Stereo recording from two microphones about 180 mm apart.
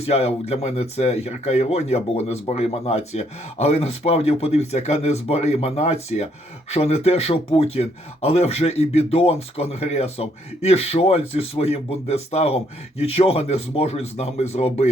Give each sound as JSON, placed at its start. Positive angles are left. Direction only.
{"t": 0.0, "sound": "speech", "side_deg": 35}